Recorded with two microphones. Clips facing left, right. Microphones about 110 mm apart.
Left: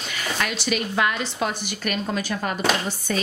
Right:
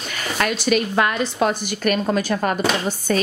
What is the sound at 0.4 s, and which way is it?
A woman's voice, 50° right (ahead or behind).